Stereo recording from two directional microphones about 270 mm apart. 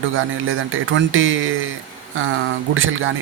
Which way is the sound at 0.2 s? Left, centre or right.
Right.